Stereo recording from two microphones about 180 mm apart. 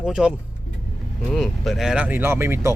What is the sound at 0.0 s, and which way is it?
Speech, 5° right (ahead or behind).